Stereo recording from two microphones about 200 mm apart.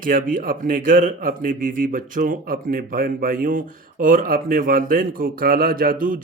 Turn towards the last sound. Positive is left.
turn(degrees=-45)  # may be behind; listen again after turning